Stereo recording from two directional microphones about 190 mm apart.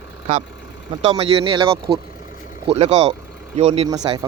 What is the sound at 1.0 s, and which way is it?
Speech, 30° right (ahead or behind).